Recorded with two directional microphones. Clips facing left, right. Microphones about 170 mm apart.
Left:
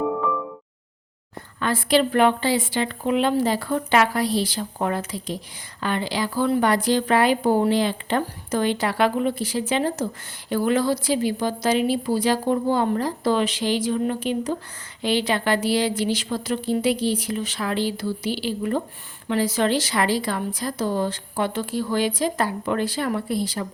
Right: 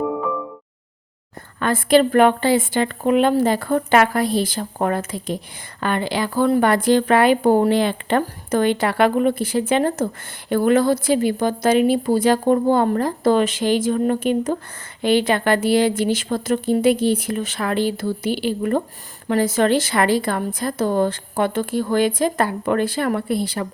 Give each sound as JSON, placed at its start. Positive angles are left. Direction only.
{"t": 1.5, "sound": "a woman's voice", "side_deg": -50}